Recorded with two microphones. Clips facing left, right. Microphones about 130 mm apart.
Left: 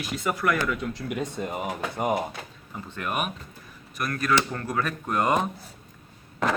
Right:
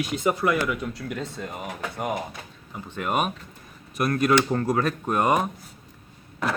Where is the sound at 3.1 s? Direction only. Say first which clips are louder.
Right 5 dB; 30° right (ahead or behind).